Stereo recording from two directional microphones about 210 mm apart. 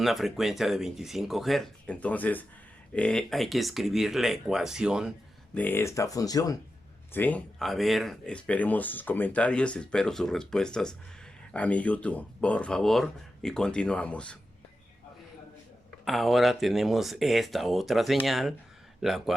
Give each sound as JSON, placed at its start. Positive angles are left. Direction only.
{"t": 0.0, "sound": "speech", "side_deg": 0}
{"t": 5.5, "sound": "speech", "side_deg": 10}
{"t": 16.0, "sound": "speech", "side_deg": 0}